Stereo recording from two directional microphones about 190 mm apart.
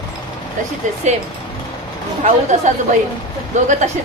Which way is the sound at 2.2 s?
40° right (ahead or behind).